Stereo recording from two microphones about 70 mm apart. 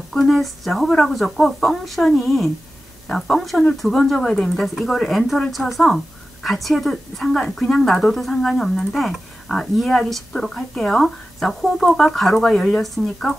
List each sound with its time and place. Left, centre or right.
0.1 s speech: centre